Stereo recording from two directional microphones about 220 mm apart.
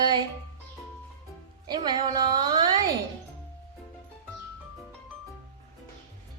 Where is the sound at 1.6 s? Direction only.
20° right (ahead or behind).